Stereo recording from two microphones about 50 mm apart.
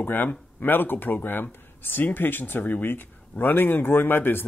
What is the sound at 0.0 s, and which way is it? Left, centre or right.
Speech, left.